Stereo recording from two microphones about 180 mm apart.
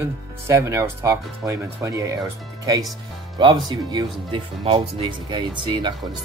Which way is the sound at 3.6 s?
25° right (ahead or behind).